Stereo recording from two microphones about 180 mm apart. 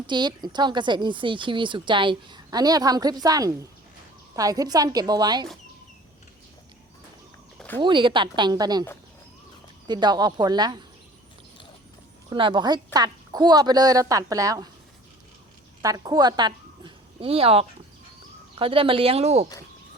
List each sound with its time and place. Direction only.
0.1 s a woman's voice: 25° right (ahead or behind)
7.8 s a woman's voice: 25° right (ahead or behind)
12.3 s a woman's voice: 25° right (ahead or behind)
15.8 s a woman's voice: 20° right (ahead or behind)